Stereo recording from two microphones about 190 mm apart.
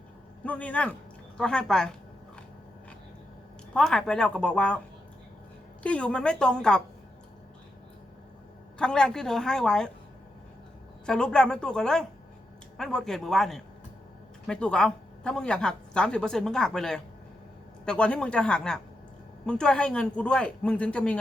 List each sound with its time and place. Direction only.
0.4 s a man's voice: 5° left (ahead or behind)
3.8 s speech: 5° left (ahead or behind)
5.8 s speech: 5° left (ahead or behind)
8.8 s speech: 5° left (ahead or behind)
11.0 s speech: 5° left (ahead or behind)